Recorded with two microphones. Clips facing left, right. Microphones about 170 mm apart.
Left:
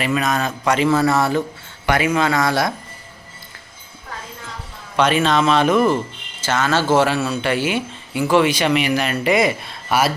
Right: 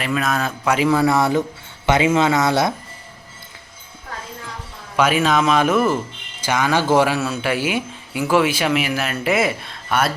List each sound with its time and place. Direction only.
0.0 s a man's voice: centre (ahead or behind); by 2.7 s 20° right (ahead or behind)
4.9 s a man's voice: 5° right (ahead or behind)